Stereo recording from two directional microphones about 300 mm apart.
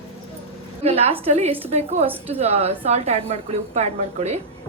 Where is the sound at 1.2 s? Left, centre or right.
Centre.